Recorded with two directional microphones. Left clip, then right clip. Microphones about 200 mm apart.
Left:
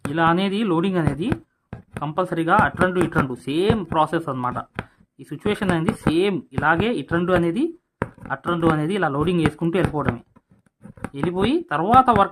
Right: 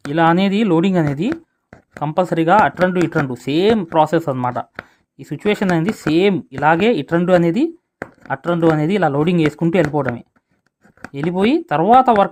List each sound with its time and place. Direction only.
0.1 s speech: 35° right (ahead or behind)